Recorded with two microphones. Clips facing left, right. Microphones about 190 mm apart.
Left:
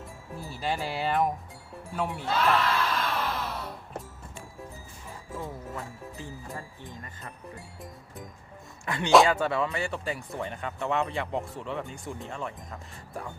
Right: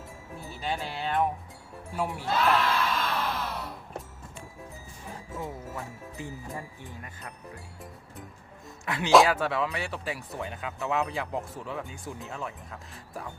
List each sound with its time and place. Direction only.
0.6 s speech: centre (ahead or behind)
2.0 s crowd: 5° right (ahead or behind)
6.1 s speech: 15° right (ahead or behind)
8.8 s speech: centre (ahead or behind)